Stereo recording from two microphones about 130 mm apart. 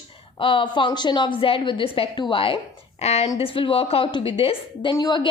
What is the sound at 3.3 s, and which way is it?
A woman's voice, 45° left (ahead or behind).